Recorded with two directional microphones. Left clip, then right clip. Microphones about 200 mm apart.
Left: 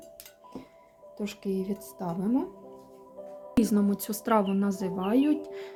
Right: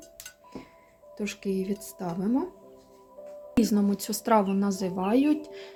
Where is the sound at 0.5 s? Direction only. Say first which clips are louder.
Even; centre (ahead or behind).